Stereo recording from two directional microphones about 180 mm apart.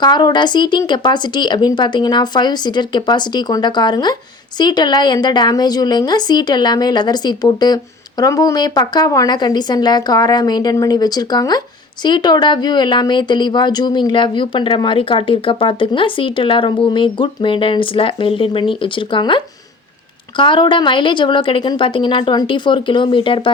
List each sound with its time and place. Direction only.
0.0 s speech: 25° left (ahead or behind)